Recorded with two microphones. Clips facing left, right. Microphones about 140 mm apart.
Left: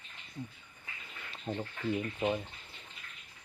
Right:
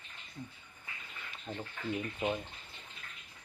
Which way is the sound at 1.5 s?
30° left (ahead or behind).